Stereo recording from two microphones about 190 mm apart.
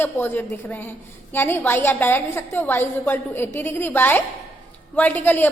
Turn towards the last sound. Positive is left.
turn(degrees=10)  # may be behind; listen again after turning